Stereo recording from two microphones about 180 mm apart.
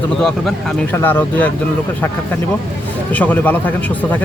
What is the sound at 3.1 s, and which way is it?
Speech, 10° left (ahead or behind).